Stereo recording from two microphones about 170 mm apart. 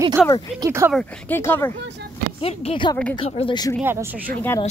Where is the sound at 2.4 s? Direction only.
35° left (ahead or behind).